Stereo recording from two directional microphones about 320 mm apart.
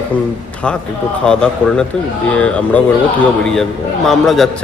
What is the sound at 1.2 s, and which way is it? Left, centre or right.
A man's voice, centre.